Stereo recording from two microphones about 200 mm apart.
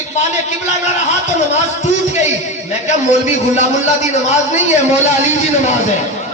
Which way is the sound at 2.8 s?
35° left (ahead or behind).